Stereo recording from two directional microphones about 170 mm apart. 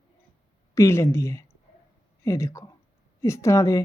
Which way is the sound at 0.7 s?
15° left (ahead or behind).